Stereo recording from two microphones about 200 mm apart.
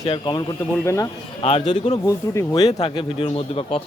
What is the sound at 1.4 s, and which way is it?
Speech, 30° left (ahead or behind).